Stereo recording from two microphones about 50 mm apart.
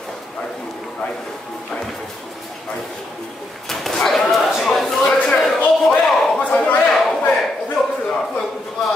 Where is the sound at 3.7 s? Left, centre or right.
Centre.